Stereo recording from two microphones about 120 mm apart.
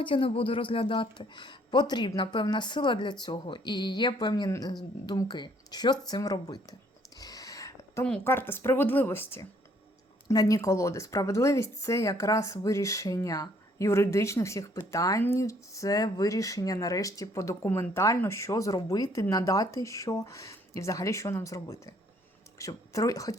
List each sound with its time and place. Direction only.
0.0 s speech: 50° left (ahead or behind)
7.2 s a sound: 30° left (ahead or behind)
8.2 s a woman's voice: 20° left (ahead or behind)